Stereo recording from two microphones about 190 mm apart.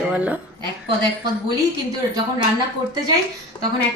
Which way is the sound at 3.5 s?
20° left (ahead or behind).